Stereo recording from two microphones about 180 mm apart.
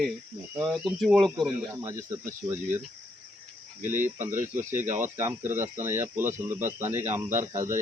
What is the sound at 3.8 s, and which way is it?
Speech, 45° right (ahead or behind).